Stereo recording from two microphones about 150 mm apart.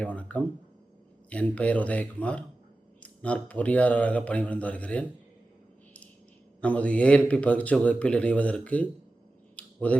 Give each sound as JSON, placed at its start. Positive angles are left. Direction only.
{"t": 0.0, "sound": "speech", "side_deg": 10}
{"t": 6.6, "sound": "speech", "side_deg": 10}
{"t": 9.6, "sound": "a sound", "side_deg": 10}